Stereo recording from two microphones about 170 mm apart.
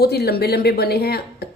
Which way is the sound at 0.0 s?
65° left (ahead or behind).